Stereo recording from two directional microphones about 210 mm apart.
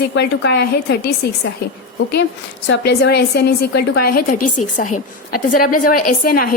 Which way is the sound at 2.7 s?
50° left (ahead or behind).